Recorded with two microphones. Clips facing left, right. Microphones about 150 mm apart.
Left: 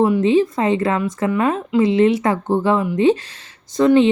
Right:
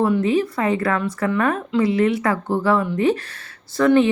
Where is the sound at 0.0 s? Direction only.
15° left (ahead or behind).